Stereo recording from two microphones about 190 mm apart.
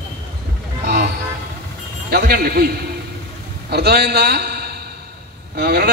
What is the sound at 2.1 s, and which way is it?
Speech, 50° right (ahead or behind).